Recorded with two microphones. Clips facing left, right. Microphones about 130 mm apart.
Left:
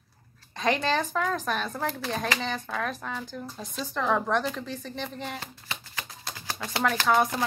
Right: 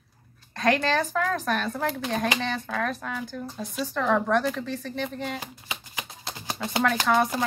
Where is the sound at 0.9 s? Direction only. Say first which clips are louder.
Right 2 dB; centre (ahead or behind).